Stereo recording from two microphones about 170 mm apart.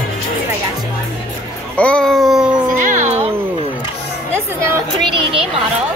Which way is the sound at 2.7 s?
45° right (ahead or behind).